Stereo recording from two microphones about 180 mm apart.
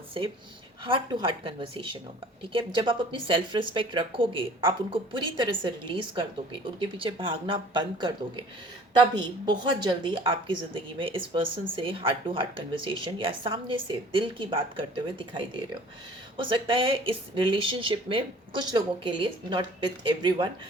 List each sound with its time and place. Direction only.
0.9 s speech: 30° right (ahead or behind)
9.1 s speech: 25° right (ahead or behind)